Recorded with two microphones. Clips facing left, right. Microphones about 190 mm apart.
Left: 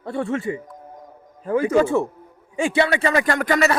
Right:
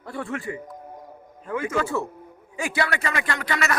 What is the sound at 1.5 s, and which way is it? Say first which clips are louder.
A man's voice: left 8 dB; 35° left (ahead or behind).